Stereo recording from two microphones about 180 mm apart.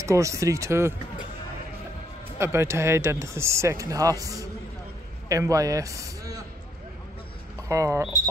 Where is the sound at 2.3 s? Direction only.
15° right (ahead or behind).